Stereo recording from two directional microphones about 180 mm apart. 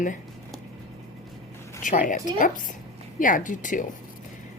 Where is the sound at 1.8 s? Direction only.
45° left (ahead or behind).